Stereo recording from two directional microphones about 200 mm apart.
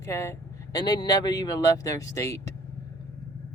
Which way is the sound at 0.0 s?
15° left (ahead or behind).